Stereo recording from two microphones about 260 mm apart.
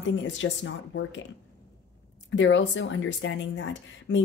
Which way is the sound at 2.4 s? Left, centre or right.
Left.